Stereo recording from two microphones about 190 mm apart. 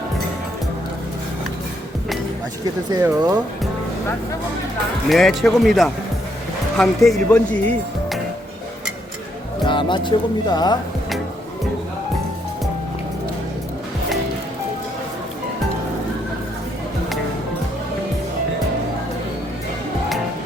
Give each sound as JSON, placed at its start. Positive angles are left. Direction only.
{"t": 2.9, "sound": "speech", "side_deg": -20}
{"t": 5.0, "sound": "speech", "side_deg": 0}
{"t": 9.6, "sound": "speech", "side_deg": 25}